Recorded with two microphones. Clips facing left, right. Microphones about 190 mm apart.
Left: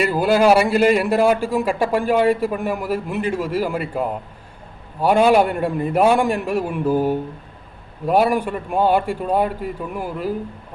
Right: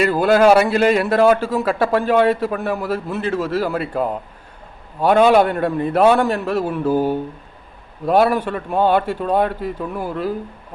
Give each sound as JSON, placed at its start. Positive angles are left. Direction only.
{"t": 0.0, "sound": "a man's voice", "side_deg": 10}